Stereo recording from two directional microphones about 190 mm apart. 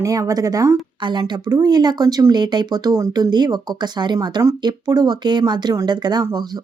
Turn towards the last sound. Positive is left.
turn(degrees=-20)  # may be behind; listen again after turning